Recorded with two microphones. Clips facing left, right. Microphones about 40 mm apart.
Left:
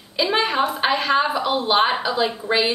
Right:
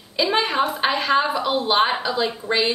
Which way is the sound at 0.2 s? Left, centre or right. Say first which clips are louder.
Even; centre.